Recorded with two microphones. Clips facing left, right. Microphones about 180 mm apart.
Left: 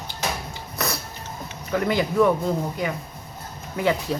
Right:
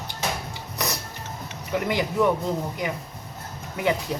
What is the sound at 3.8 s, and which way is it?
Speech, 15° right (ahead or behind).